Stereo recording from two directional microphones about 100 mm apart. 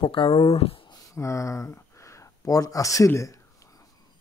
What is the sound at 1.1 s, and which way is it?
Speech, 30° left (ahead or behind).